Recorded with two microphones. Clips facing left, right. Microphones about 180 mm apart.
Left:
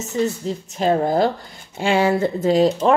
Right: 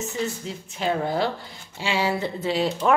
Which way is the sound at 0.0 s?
40° left (ahead or behind).